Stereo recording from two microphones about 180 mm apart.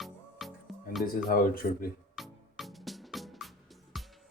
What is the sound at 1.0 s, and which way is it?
Speech, 55° left (ahead or behind).